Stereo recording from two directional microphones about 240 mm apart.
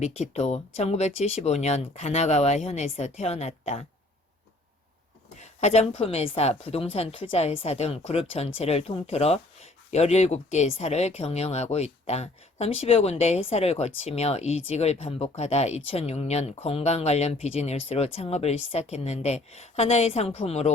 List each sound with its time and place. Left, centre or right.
0.0 s a woman's voice: left
5.4 s a woman's voice: left